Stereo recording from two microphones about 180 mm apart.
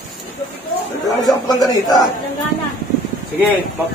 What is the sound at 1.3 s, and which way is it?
Speech, 20° left (ahead or behind).